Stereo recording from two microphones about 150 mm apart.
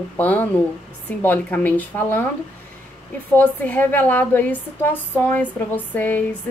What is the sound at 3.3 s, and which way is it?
A woman's voice, 10° left (ahead or behind).